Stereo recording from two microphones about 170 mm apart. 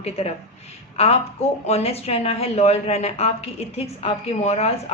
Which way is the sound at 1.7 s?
40° left (ahead or behind).